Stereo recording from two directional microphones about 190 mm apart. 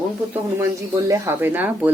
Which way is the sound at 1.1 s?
10° right (ahead or behind).